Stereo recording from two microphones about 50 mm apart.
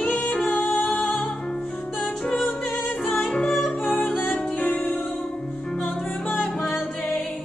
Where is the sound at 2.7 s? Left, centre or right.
Centre.